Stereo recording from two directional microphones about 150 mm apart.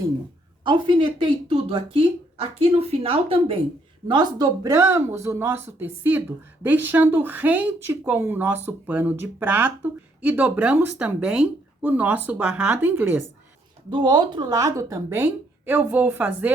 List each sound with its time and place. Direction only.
0.6 s speech: 30° right (ahead or behind)
4.1 s speech: 30° right (ahead or behind); by 13.2 s 10° right (ahead or behind)
13.9 s a woman's voice: 30° right (ahead or behind); by 16.5 s 10° right (ahead or behind)